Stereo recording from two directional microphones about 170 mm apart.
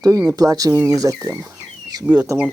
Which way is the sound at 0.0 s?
20° right (ahead or behind).